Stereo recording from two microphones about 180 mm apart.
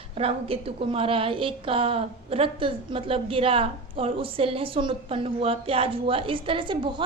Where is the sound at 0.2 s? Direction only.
30° right (ahead or behind).